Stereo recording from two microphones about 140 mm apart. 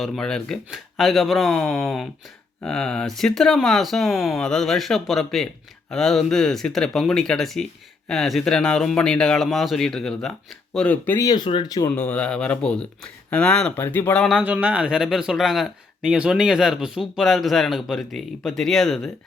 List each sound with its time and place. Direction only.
0.0 s speech: 5° left (ahead or behind)
11.2 s speech: 30° left (ahead or behind)
11.9 s speech: 10° left (ahead or behind)
14.3 s speech: 10° right (ahead or behind)